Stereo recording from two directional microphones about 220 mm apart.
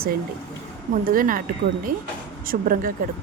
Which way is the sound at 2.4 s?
40° right (ahead or behind).